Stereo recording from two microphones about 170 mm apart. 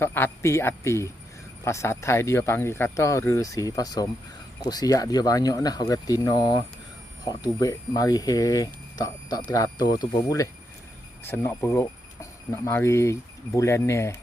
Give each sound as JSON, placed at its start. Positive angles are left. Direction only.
{"t": 0.0, "sound": "speech", "side_deg": 15}